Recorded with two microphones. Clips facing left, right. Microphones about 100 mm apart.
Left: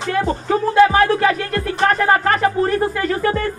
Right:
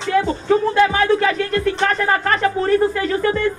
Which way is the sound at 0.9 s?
45° left (ahead or behind).